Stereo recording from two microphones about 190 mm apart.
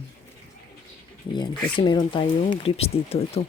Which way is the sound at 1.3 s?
25° left (ahead or behind).